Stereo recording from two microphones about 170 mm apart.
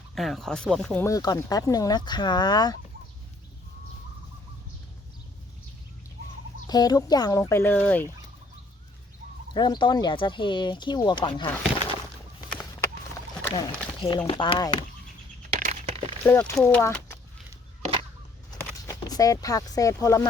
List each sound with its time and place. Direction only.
0.1 s speech: centre (ahead or behind)
1.0 s speech: 20° left (ahead or behind)
6.7 s speech: 25° left (ahead or behind)
9.6 s speech: 25° left (ahead or behind)
13.5 s speech: 30° left (ahead or behind)
15.4 s a sound: 40° right (ahead or behind)
16.2 s speech: 10° left (ahead or behind)
18.5 s a sound: 20° left (ahead or behind)